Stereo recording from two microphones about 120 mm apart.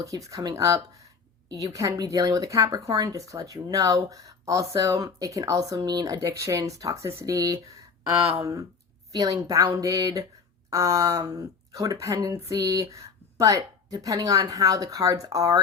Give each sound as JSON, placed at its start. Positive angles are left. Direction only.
{"t": 0.0, "sound": "speech", "side_deg": -25}
{"t": 9.1, "sound": "speech", "side_deg": -30}